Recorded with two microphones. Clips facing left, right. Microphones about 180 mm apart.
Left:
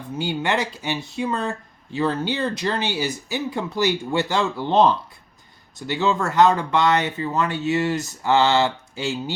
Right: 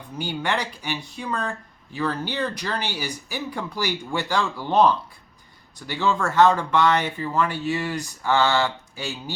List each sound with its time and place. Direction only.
0.2 s speech: 20° left (ahead or behind)